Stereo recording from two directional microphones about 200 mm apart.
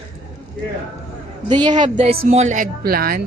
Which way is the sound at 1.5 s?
20° right (ahead or behind).